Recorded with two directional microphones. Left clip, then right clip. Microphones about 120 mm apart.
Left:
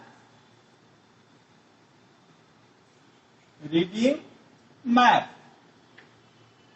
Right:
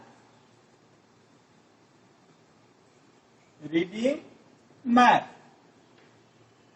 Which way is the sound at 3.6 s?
30° left (ahead or behind).